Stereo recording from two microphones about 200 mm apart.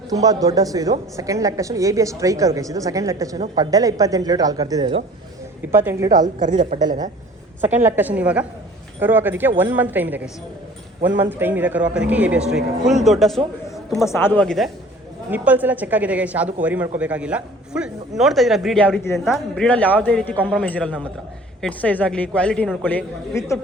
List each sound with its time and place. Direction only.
0.1 s a woman's voice: 20° right (ahead or behind)
6.7 s a woman's voice: 35° right (ahead or behind)
7.6 s a woman's voice: 10° right (ahead or behind)
14.0 s a woman's voice: 10° left (ahead or behind)
15.3 s a woman's voice: 10° right (ahead or behind); by 23.6 s 10° left (ahead or behind)